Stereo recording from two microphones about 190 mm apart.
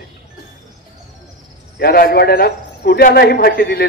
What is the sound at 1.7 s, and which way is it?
A man's voice, 55° left (ahead or behind).